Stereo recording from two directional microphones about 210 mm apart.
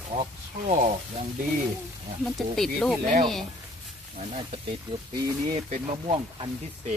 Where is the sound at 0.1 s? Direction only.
30° right (ahead or behind).